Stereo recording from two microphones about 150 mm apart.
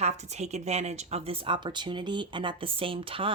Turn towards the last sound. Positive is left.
turn(degrees=-35)  # may be behind; listen again after turning